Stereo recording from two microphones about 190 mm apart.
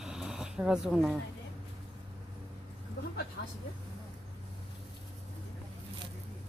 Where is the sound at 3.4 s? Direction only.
65° left (ahead or behind).